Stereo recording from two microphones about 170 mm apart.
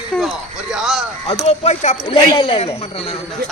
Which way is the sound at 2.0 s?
30° left (ahead or behind).